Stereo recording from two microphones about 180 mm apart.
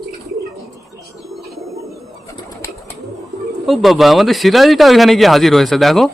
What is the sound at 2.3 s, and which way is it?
Bird, 20° left (ahead or behind).